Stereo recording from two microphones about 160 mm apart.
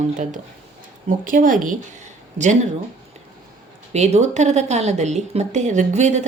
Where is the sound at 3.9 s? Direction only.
45° right (ahead or behind).